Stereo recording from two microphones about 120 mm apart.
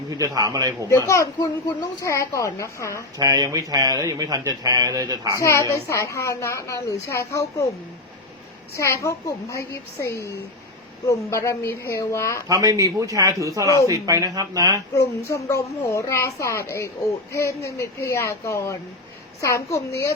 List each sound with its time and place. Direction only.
0.1 s a man's voice: 30° right (ahead or behind)
0.9 s a child's voice: 25° left (ahead or behind)
3.2 s a man's voice: 30° right (ahead or behind)
5.4 s a child's voice: 25° left (ahead or behind)
8.7 s a child's voice: 25° left (ahead or behind)
12.5 s speech: 25° right (ahead or behind)
14.9 s a child's voice: 25° left (ahead or behind)